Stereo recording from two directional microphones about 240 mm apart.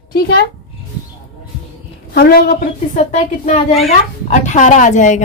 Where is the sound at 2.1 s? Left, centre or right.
Left.